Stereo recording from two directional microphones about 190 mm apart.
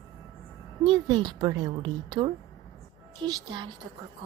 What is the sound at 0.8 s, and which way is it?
A woman's voice, 25° right (ahead or behind).